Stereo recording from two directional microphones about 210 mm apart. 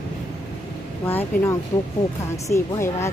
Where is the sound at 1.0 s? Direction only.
10° left (ahead or behind).